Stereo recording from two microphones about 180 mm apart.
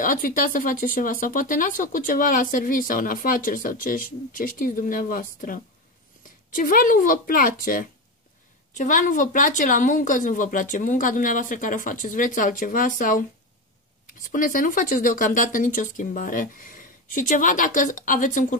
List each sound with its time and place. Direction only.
0.0 s speech: 50° left (ahead or behind)